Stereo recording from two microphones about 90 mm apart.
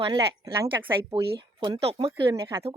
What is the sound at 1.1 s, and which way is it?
Speech, 50° right (ahead or behind).